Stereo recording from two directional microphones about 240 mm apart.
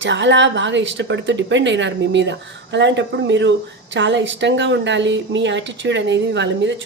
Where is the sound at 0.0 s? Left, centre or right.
Right.